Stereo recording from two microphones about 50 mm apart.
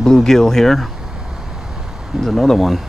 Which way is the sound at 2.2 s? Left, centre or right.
Centre.